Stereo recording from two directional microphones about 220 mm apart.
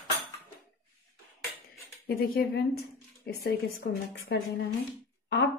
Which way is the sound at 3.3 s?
50° left (ahead or behind).